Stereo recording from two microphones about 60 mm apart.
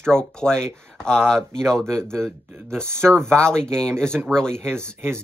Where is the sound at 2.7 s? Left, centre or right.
Right.